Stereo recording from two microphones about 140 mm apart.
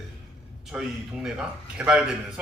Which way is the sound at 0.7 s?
5° right (ahead or behind).